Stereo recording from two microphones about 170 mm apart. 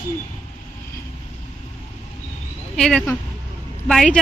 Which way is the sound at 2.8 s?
5° left (ahead or behind).